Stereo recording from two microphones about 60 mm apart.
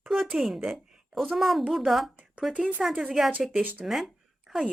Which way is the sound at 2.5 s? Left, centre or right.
Centre.